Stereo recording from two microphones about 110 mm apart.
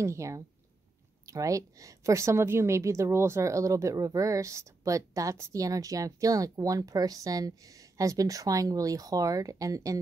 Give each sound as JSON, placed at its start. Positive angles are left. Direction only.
{"t": 0.0, "sound": "a woman's voice", "side_deg": -25}